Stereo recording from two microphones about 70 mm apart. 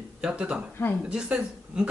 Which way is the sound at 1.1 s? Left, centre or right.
Centre.